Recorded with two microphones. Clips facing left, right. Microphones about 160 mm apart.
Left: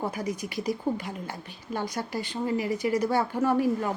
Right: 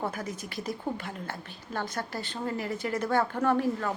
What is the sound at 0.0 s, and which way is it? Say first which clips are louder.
A woman's voice: left 3 dB; 15° left (ahead or behind).